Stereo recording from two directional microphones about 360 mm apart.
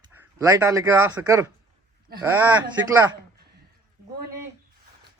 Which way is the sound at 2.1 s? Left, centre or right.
Right.